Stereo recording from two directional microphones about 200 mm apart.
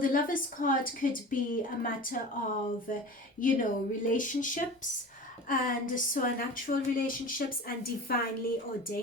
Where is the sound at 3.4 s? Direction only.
45° left (ahead or behind).